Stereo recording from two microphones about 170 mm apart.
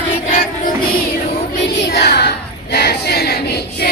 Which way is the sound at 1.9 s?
70° left (ahead or behind).